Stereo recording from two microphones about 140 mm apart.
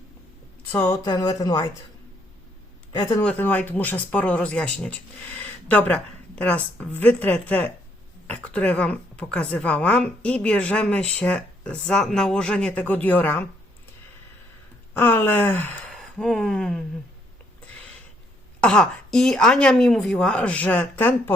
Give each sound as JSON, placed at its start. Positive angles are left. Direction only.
{"t": 0.8, "sound": "speech", "side_deg": 30}
{"t": 2.9, "sound": "speech", "side_deg": 30}
{"t": 3.2, "sound": "speech", "side_deg": 10}
{"t": 14.9, "sound": "speech", "side_deg": 15}
{"t": 15.9, "sound": "speech", "side_deg": 5}
{"t": 18.6, "sound": "speech", "side_deg": 5}